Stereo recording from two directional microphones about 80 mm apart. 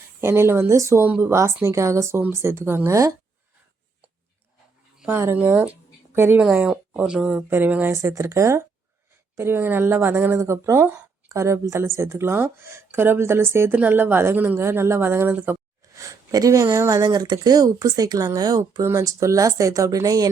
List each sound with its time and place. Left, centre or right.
0.2 s speech: right
5.4 s speech: centre
7.9 s speech: right
16.0 s speech: right
17.0 s speech: right
17.3 s speech: right